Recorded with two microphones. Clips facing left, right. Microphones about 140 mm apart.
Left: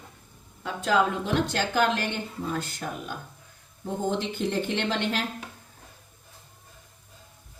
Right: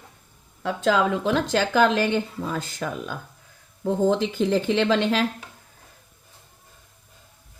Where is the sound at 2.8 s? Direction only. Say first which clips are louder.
Right 5 dB; 90° right.